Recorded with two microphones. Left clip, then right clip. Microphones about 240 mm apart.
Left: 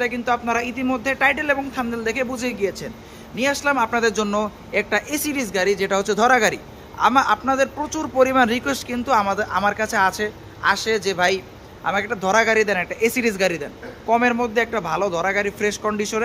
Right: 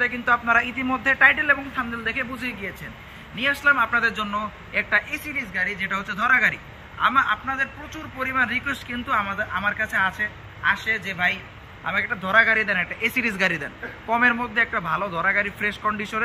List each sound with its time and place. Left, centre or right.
0.0 s a man's voice: centre